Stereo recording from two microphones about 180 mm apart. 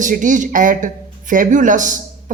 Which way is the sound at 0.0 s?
45° right (ahead or behind).